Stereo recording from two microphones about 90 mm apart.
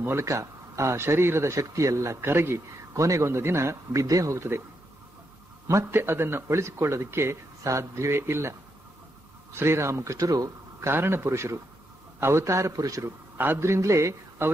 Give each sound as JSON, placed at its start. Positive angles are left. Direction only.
{"t": 0.0, "sound": "speech", "side_deg": -30}
{"t": 5.7, "sound": "speech", "side_deg": -35}
{"t": 9.6, "sound": "speech", "side_deg": -30}
{"t": 10.9, "sound": "speech", "side_deg": -25}
{"t": 13.4, "sound": "speech", "side_deg": -25}